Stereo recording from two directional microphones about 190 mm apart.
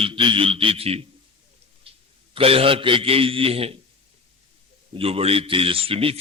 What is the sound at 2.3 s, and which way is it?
A man's voice, 30° right (ahead or behind).